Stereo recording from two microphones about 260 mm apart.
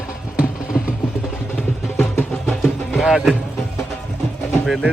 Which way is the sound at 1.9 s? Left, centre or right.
Centre.